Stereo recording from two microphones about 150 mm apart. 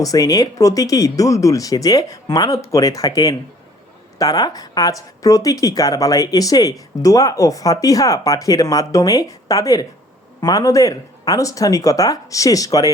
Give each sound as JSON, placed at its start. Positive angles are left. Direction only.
{"t": 0.0, "sound": "speech", "side_deg": 25}